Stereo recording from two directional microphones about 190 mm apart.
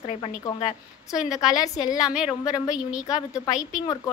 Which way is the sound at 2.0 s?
5° right (ahead or behind).